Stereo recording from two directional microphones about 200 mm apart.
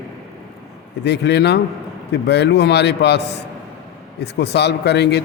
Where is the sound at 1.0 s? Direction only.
55° left (ahead or behind).